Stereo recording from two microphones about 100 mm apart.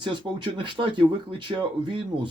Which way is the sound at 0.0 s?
50° right (ahead or behind).